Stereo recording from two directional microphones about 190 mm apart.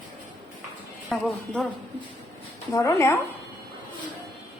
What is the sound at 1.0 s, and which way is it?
Speech, 5° left (ahead or behind).